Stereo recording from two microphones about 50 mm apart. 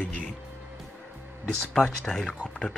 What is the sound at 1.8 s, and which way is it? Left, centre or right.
Speech, centre.